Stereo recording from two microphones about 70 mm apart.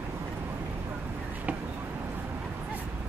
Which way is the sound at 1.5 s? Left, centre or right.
Right.